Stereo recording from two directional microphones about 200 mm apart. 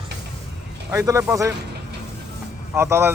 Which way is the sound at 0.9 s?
15° right (ahead or behind).